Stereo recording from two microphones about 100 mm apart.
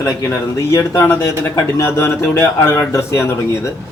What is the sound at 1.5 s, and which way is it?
Speech, 25° left (ahead or behind).